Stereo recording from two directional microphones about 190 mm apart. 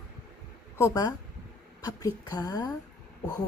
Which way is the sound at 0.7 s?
15° left (ahead or behind).